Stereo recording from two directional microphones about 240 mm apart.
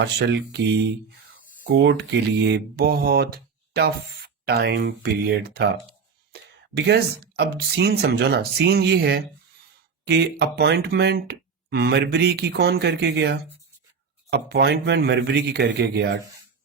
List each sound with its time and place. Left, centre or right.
0.0 s speech: right